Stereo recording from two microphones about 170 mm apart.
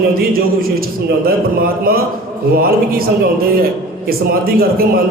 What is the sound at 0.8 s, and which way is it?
A man's voice, 60° right (ahead or behind).